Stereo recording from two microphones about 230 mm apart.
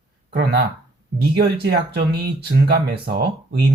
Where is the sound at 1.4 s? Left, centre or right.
Right.